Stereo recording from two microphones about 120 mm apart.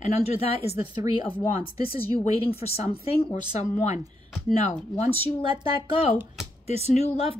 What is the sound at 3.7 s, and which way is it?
Speech, 85° left.